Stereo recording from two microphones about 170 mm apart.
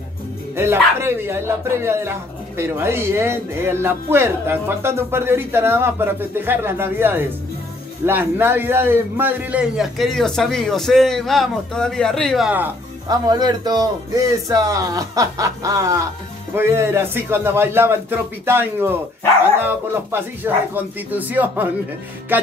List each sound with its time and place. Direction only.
0.6 s a man's voice: 15° right (ahead or behind)
13.1 s speech: 20° right (ahead or behind)